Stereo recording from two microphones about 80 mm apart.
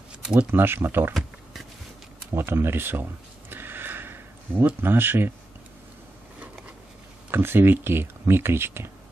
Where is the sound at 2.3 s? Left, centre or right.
Right.